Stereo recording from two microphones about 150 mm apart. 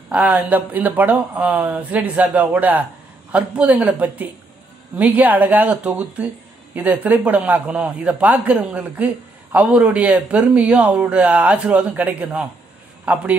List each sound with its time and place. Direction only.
0.1 s speech: 10° right (ahead or behind)
4.9 s speech: 10° right (ahead or behind)